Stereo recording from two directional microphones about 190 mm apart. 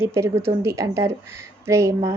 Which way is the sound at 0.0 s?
15° right (ahead or behind).